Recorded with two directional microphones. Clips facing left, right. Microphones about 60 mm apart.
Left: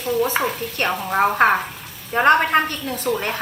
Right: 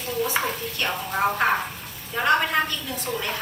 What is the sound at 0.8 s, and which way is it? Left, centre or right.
A woman's voice, left.